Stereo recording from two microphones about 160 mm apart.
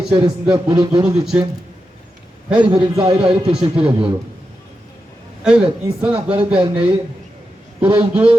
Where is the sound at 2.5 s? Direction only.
30° right (ahead or behind).